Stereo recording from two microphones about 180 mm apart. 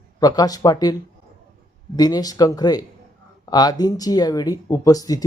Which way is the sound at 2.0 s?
20° left (ahead or behind).